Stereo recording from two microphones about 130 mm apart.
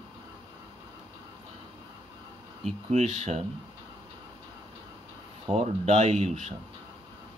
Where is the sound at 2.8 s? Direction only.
60° right (ahead or behind).